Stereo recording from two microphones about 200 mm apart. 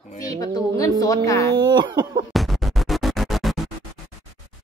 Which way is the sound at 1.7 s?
20° right (ahead or behind).